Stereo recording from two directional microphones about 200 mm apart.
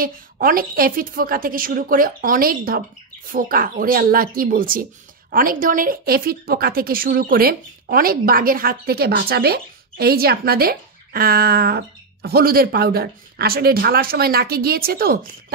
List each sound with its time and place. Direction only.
0.0 s a woman's voice: 45° right (ahead or behind)